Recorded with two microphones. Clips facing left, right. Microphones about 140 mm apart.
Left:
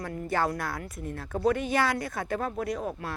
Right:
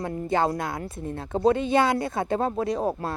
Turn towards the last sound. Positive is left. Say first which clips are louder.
# right 6 dB
turn(degrees=-30)  # may be behind; listen again after turning